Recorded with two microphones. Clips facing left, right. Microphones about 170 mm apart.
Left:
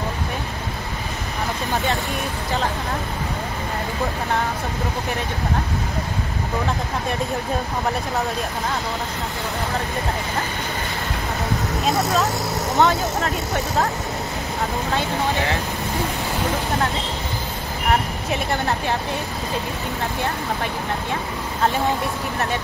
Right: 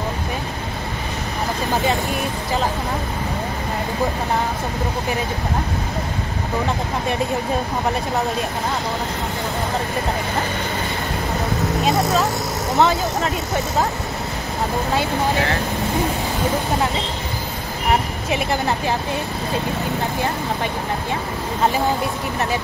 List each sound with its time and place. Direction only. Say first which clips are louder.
12.7 s speech: right 1 dB; centre (ahead or behind)
18.3 s speech: right 2 dB; centre (ahead or behind)